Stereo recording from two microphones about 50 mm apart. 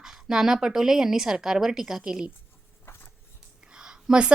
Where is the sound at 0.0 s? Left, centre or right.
Centre.